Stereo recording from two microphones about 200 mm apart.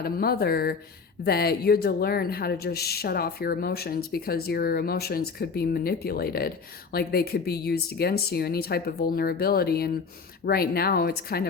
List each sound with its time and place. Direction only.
0.0 s speech: 50° left (ahead or behind)